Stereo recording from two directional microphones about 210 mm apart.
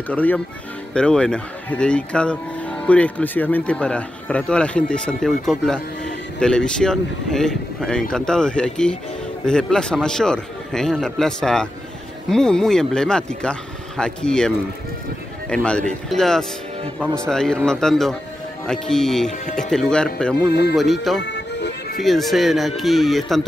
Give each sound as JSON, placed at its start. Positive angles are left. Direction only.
{"t": 0.1, "sound": "speech", "side_deg": 5}
{"t": 15.5, "sound": "speech", "side_deg": 5}
{"t": 21.2, "sound": "music", "side_deg": 55}
{"t": 22.0, "sound": "speech", "side_deg": 0}